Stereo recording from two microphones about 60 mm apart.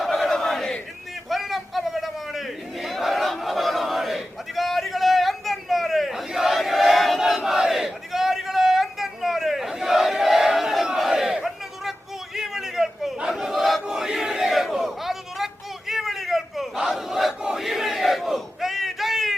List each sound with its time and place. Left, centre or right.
0.0 s battle cry: centre